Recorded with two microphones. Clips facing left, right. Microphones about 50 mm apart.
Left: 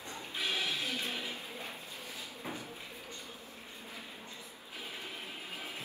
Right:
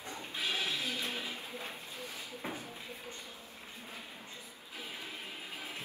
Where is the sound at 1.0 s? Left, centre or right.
Right.